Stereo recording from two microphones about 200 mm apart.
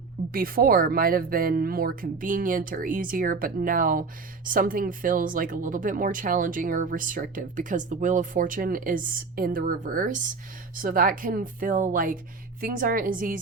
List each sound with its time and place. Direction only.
0.3 s speech: 45° right (ahead or behind)